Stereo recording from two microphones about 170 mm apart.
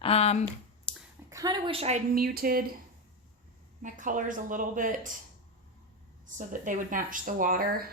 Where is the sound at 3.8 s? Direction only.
50° right (ahead or behind).